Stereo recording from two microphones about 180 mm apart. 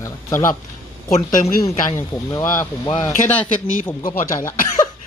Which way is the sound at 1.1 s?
45° left (ahead or behind).